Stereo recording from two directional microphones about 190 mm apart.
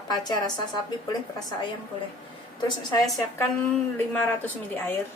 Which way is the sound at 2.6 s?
25° left (ahead or behind).